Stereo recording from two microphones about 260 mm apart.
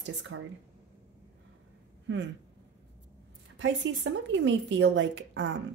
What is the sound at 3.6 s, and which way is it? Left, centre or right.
Speech, right.